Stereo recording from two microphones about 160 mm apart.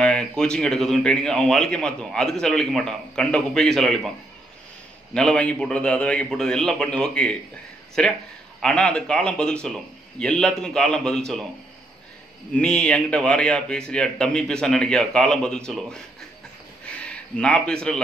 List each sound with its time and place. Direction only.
0.0 s a man's voice: 5° left (ahead or behind)
5.1 s a man's voice: 5° left (ahead or behind)
12.5 s a man's voice: 5° left (ahead or behind)